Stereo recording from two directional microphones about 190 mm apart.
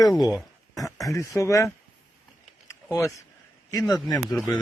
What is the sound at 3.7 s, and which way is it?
Speech, 20° left (ahead or behind).